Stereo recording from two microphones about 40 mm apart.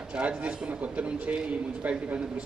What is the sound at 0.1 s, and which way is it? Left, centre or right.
A man's voice, right.